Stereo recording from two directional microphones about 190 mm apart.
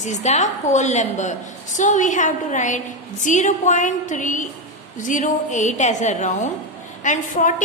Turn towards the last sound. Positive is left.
turn(degrees=40)  # may be behind; listen again after turning